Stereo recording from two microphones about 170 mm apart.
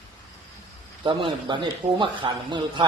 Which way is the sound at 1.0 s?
25° right (ahead or behind).